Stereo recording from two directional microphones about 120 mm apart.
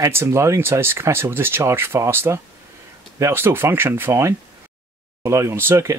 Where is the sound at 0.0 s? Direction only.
20° right (ahead or behind).